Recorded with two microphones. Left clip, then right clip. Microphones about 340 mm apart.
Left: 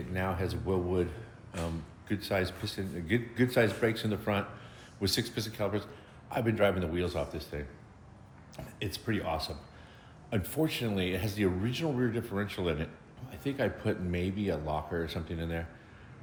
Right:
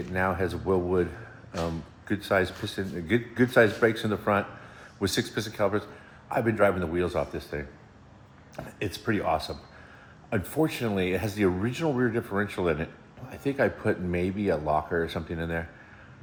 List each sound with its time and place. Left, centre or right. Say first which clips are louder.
0.1 s speech: right 7 dB; centre
2.0 s speech: right 7 dB; centre